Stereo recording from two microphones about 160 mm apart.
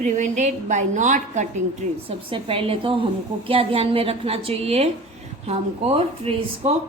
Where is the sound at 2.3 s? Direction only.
35° right (ahead or behind).